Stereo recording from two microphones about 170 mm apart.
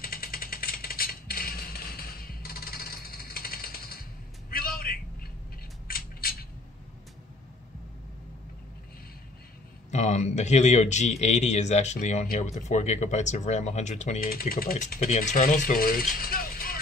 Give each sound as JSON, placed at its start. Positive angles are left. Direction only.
{"t": 0.0, "sound": "a sound", "side_deg": 60}
{"t": 5.9, "sound": "coin", "side_deg": 60}
{"t": 9.8, "sound": "a man's voice", "side_deg": 40}
{"t": 14.2, "sound": "speech", "side_deg": 60}
{"t": 15.0, "sound": "speech", "side_deg": 40}
{"t": 15.3, "sound": "speech", "side_deg": 55}